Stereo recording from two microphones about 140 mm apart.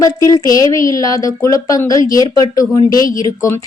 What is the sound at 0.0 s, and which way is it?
A woman's voice, 25° left (ahead or behind).